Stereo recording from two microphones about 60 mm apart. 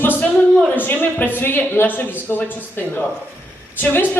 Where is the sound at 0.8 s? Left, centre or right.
Left.